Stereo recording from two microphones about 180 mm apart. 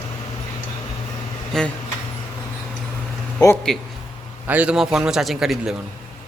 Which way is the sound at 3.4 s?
20° left (ahead or behind).